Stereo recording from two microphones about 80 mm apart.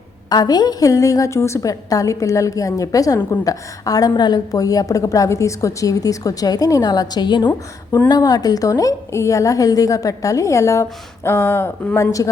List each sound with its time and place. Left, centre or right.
0.3 s a woman's voice: left
8.0 s a woman's voice: left
12.2 s a woman's voice: left